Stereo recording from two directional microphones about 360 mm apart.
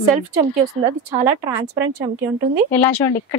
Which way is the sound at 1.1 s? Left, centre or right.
Centre.